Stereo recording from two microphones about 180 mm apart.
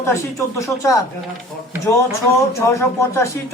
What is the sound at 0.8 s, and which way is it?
Speech, 20° left (ahead or behind).